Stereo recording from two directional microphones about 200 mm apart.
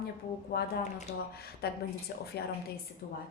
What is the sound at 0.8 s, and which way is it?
Speech, 35° left (ahead or behind).